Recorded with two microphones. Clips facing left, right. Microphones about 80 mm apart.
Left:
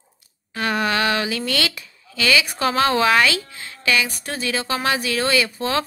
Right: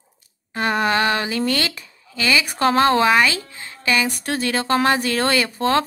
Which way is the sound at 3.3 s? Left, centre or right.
Right.